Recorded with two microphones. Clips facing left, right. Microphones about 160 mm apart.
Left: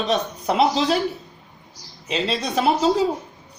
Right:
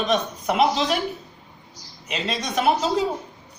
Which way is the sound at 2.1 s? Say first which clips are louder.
Left 4 dB; 30° left (ahead or behind).